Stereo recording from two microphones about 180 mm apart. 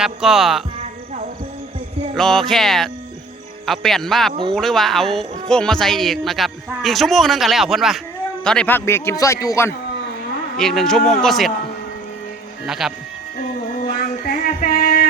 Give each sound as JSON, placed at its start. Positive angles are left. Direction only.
{"t": 0.0, "sound": "speech", "side_deg": 0}
{"t": 2.1, "sound": "speech", "side_deg": 5}
{"t": 10.6, "sound": "speech", "side_deg": 0}
{"t": 12.6, "sound": "speech", "side_deg": 0}
{"t": 13.7, "sound": "music", "side_deg": 50}